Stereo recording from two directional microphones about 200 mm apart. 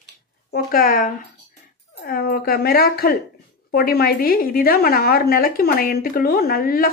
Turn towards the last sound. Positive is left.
turn(degrees=45)  # may be behind; listen again after turning